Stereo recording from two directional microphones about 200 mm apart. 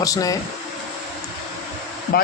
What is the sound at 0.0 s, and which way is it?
Speech, 15° left (ahead or behind).